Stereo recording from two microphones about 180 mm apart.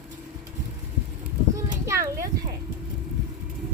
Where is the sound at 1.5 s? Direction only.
15° right (ahead or behind).